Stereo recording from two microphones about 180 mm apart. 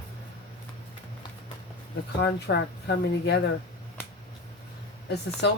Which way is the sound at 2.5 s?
65° left (ahead or behind).